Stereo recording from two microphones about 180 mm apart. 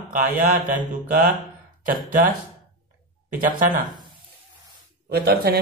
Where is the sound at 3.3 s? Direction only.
50° right (ahead or behind).